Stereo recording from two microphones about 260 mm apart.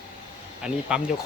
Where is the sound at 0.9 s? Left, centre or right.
Centre.